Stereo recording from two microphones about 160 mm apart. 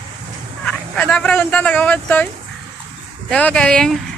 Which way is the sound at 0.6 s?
10° left (ahead or behind).